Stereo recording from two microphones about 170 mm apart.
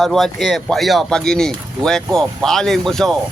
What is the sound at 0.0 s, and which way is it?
Speech, centre (ahead or behind).